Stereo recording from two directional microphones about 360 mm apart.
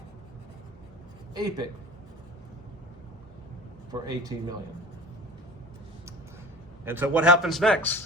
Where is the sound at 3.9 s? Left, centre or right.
Centre.